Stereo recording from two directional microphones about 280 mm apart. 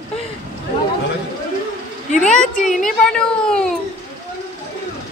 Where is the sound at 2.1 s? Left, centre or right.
Left.